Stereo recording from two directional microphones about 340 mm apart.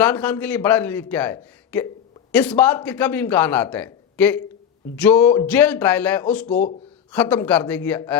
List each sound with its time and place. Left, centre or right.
0.0 s a man's voice: centre